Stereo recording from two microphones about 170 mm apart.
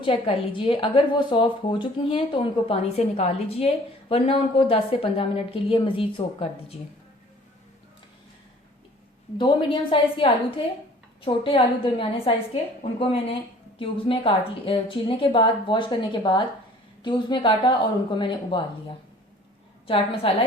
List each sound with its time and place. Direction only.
0.0 s a woman's voice: 30° left (ahead or behind)
9.4 s a woman's voice: 30° left (ahead or behind)
20.2 s a woman's voice: 35° left (ahead or behind)